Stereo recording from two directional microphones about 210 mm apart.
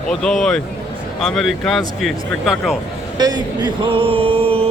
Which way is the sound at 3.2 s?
20° right (ahead or behind).